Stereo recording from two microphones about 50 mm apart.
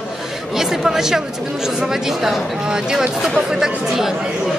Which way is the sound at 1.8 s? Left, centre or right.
Centre.